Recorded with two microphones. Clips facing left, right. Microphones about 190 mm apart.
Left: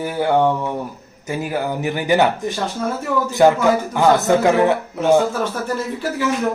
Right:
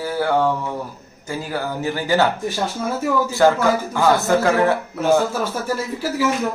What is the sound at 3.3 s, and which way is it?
Speech, 20° left (ahead or behind).